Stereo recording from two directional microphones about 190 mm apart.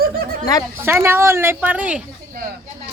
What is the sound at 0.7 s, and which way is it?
Speech, 10° right (ahead or behind).